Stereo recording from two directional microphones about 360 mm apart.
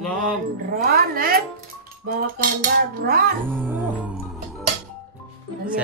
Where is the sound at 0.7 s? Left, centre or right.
Right.